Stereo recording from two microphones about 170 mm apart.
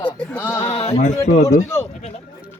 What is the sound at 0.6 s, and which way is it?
Sheep, 35° left (ahead or behind).